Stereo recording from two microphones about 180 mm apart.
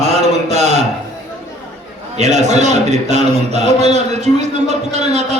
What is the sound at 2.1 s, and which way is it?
A man's voice, 40° right (ahead or behind).